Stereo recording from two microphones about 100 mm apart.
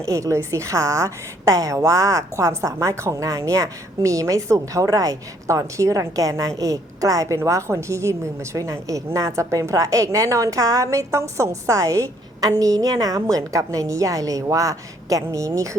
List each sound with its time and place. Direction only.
0.0 s a woman's voice: 30° right (ahead or behind)